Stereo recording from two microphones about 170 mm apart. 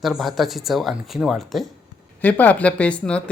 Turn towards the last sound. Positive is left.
turn(degrees=5)  # may be behind; listen again after turning